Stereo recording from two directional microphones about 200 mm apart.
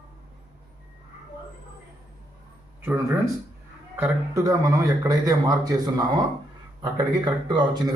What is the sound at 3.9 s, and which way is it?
A man's voice, 15° right (ahead or behind).